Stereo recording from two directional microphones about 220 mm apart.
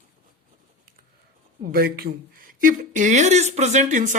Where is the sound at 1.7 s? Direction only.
40° right (ahead or behind).